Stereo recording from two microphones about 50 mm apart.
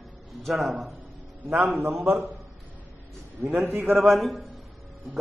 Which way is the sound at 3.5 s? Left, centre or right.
Right.